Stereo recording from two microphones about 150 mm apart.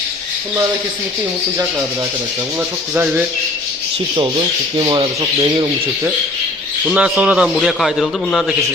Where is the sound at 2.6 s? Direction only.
15° right (ahead or behind).